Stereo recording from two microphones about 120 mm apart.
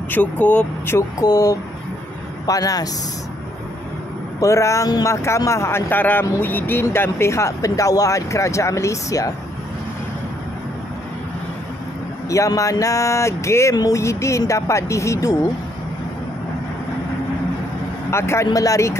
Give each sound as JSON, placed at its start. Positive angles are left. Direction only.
{"t": 0.1, "sound": "speech", "side_deg": 15}
{"t": 0.9, "sound": "speech", "side_deg": 30}
{"t": 4.4, "sound": "speech", "side_deg": 25}
{"t": 12.3, "sound": "speech", "side_deg": 25}
{"t": 18.1, "sound": "speech", "side_deg": 20}